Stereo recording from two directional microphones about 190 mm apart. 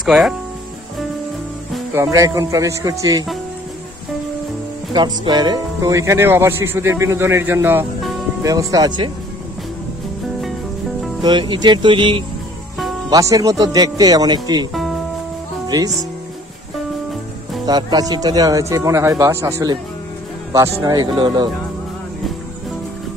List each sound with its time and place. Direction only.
0.0 s speech: centre (ahead or behind)
2.0 s speech: 15° right (ahead or behind)
4.9 s speech: 25° right (ahead or behind)
11.2 s speech: 25° right (ahead or behind)
14.7 s music: centre (ahead or behind)
15.6 s music: 20° right (ahead or behind)
17.6 s speech: 20° right (ahead or behind)